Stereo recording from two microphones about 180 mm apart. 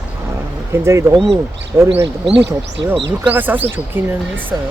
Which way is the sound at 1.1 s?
Centre (ahead or behind).